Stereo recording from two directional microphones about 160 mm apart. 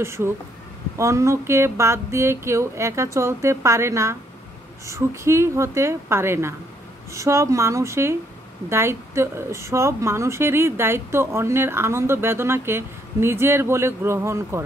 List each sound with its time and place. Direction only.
0.0 s a woman's voice: 15° right (ahead or behind)